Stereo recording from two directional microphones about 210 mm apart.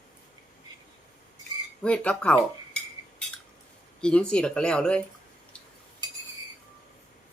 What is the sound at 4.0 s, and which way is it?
Speech, 5° left (ahead or behind).